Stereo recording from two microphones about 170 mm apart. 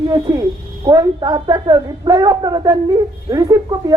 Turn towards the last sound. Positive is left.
turn(degrees=-20)  # may be behind; listen again after turning